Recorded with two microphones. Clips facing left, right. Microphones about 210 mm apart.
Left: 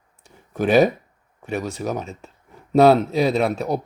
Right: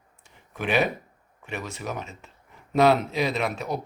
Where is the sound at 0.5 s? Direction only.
40° left (ahead or behind).